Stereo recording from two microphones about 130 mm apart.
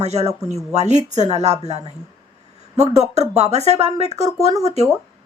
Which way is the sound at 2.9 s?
55° right (ahead or behind).